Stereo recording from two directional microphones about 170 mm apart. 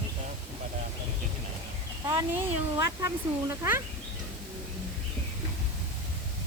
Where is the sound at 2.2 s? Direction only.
15° right (ahead or behind).